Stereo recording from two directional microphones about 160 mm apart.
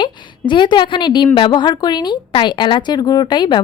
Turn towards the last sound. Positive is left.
turn(degrees=30)  # may be behind; listen again after turning